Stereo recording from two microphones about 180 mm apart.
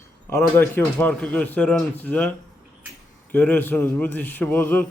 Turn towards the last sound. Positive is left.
turn(degrees=10)  # may be behind; listen again after turning